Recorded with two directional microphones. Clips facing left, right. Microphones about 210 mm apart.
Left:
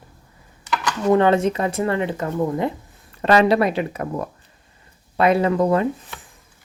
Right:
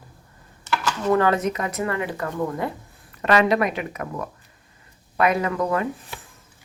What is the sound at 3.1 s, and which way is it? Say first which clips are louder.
Speech: left 3 dB; 30° left (ahead or behind).